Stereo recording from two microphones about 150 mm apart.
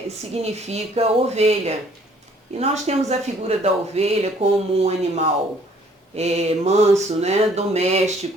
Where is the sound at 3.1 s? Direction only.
45° right (ahead or behind).